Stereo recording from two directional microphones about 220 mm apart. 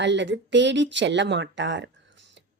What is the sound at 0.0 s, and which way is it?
A woman's voice, 55° right (ahead or behind).